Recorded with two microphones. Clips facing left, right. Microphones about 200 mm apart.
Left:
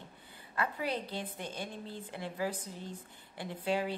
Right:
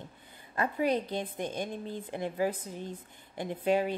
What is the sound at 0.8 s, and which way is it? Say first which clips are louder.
A woman's voice: right 7 dB; 15° right (ahead or behind).